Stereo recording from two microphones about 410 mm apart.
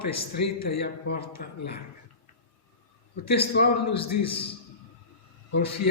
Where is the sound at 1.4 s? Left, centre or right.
Left.